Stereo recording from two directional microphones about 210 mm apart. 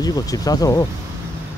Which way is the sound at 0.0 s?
15° left (ahead or behind).